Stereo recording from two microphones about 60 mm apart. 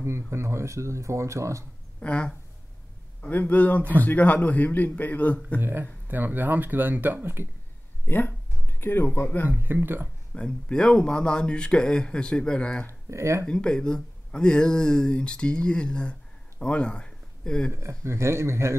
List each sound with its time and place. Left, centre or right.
0.0 s speech: right
2.0 s speech: centre
3.2 s a man's voice: left
5.6 s speech: right
8.0 s speech: left
9.6 s speech: right
10.3 s speech: centre
13.1 s speech: right
13.5 s speech: centre
17.8 s speech: right